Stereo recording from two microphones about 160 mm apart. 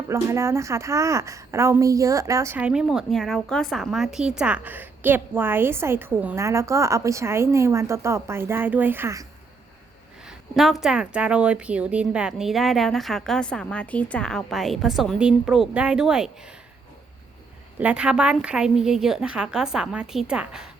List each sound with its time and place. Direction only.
0.1 s a woman's voice: 15° right (ahead or behind)
10.2 s a woman's voice: centre (ahead or behind)
17.7 s a woman's voice: 10° right (ahead or behind)